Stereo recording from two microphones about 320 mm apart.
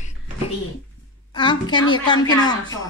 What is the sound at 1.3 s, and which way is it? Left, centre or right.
Speech, centre.